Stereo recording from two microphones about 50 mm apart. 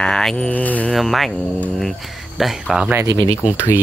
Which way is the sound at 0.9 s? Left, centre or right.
Centre.